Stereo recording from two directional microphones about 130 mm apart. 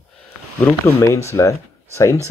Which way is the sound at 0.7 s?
20° left (ahead or behind).